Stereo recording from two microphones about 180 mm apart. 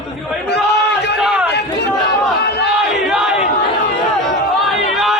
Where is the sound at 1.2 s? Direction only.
5° right (ahead or behind).